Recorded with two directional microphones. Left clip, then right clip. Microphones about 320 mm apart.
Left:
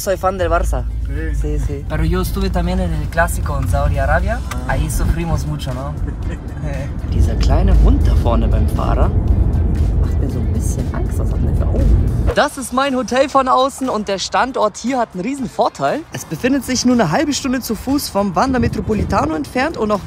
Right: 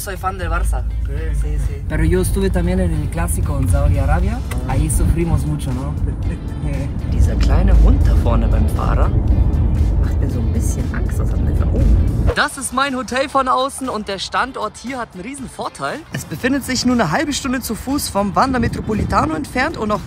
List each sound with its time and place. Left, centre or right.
0.0 s speech: left
2.0 s speech: centre
7.2 s speech: centre
12.3 s speech: centre